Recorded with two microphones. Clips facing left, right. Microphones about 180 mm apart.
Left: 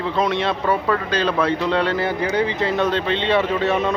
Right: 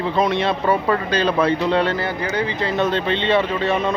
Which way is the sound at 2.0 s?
20° left (ahead or behind).